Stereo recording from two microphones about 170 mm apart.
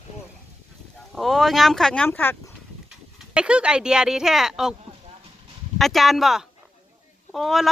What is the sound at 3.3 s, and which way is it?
Speech, 5° right (ahead or behind).